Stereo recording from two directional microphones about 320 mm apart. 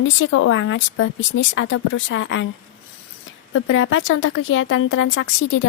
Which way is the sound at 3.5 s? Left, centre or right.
Left.